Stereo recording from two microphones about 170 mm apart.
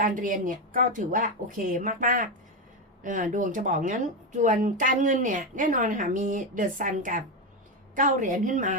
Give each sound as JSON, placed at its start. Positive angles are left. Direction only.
{"t": 0.0, "sound": "speech", "side_deg": -50}